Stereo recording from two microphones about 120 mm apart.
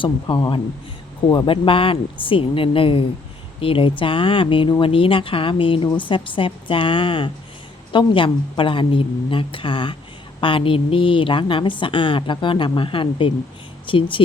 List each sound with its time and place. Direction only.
0.0 s speech: 40° left (ahead or behind)